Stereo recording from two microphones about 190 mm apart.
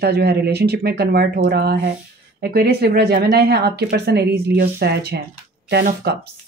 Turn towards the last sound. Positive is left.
turn(degrees=-60)  # may be behind; listen again after turning